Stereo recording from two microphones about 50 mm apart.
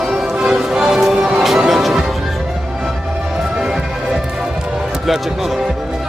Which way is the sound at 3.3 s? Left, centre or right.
Centre.